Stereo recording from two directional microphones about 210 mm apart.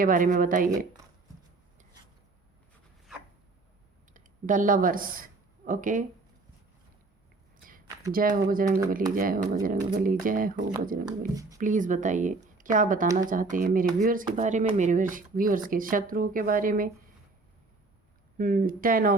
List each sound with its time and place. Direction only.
0.0 s speech: 40° right (ahead or behind)
4.1 s speech: 40° right (ahead or behind)
8.1 s speech: 40° right (ahead or behind)
18.3 s speech: 40° right (ahead or behind)